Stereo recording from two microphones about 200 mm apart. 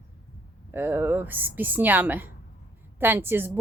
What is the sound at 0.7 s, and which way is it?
A woman's voice, 10° right (ahead or behind).